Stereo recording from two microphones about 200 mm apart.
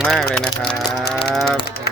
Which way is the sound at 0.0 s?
Centre (ahead or behind).